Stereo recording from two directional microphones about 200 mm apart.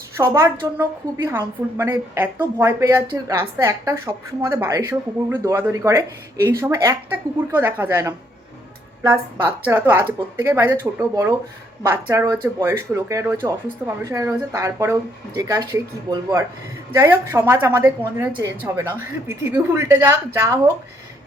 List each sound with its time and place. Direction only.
0.2 s a woman's voice: 15° right (ahead or behind)